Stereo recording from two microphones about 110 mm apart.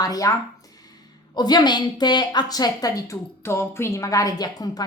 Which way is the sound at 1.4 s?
40° left (ahead or behind).